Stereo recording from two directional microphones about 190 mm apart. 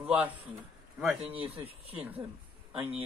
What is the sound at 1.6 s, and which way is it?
Speech, 30° right (ahead or behind).